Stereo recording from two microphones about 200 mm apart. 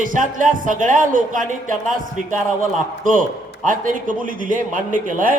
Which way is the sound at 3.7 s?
40° right (ahead or behind).